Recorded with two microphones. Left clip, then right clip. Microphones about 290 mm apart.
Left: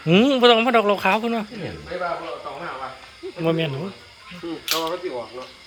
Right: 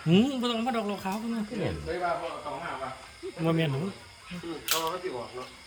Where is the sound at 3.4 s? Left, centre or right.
Centre.